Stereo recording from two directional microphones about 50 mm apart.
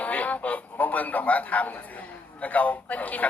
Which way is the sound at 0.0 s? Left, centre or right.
Left.